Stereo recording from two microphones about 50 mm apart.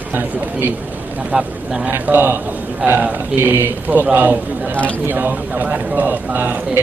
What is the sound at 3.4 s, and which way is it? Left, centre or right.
A man's voice, right.